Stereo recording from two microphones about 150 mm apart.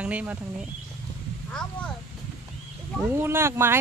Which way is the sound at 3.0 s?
15° right (ahead or behind).